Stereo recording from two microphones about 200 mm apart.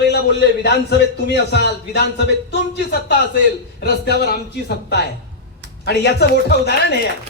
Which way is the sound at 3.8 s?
55° left (ahead or behind).